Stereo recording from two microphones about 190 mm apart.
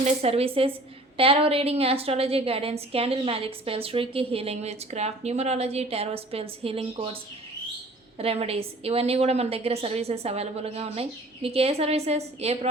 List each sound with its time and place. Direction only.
0.0 s a woman's voice: 35° right (ahead or behind)
8.2 s a woman's voice: 30° right (ahead or behind)